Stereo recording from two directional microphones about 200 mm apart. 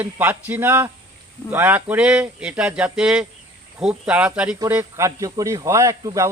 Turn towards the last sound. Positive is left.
turn(degrees=-15)  # may be behind; listen again after turning